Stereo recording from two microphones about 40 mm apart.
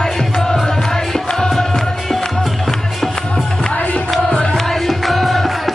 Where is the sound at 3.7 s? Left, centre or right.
Left.